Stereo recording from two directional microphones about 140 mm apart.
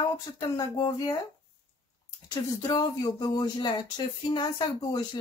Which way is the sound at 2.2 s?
25° left (ahead or behind).